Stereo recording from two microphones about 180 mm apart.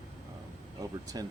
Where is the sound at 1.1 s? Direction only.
20° right (ahead or behind).